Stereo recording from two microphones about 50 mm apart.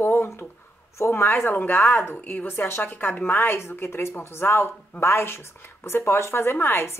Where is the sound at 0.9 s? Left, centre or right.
Left.